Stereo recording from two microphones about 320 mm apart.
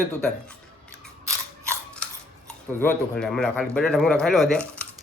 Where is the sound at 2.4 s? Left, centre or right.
Centre.